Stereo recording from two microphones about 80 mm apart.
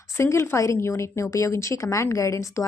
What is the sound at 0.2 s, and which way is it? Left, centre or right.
Speech, left.